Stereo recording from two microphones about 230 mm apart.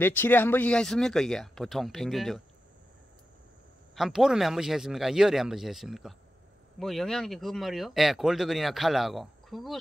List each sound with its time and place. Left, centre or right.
0.0 s speech: centre
3.9 s speech: centre